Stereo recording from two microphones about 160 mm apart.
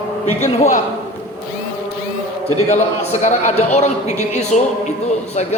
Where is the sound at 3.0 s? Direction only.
45° left (ahead or behind).